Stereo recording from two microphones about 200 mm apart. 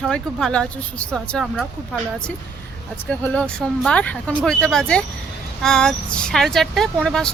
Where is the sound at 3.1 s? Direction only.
5° left (ahead or behind).